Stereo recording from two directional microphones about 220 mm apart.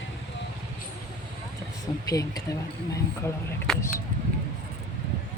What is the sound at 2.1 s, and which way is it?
Speech, 15° left (ahead or behind).